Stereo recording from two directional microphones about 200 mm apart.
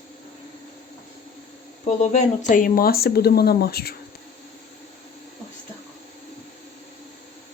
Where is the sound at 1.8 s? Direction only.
35° left (ahead or behind); by 3.9 s 50° left (ahead or behind).